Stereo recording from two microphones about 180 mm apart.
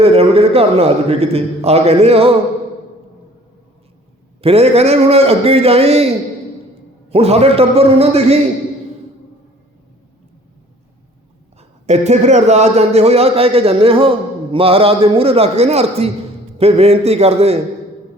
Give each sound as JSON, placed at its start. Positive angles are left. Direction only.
{"t": 0.0, "sound": "a man's voice", "side_deg": -35}
{"t": 4.4, "sound": "a man's voice", "side_deg": -35}
{"t": 11.9, "sound": "a man's voice", "side_deg": -40}